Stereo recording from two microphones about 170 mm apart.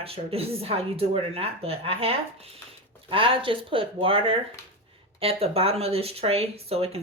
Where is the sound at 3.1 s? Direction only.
30° right (ahead or behind).